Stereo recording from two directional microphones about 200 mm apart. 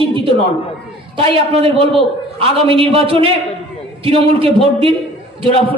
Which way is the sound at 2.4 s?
30° right (ahead or behind).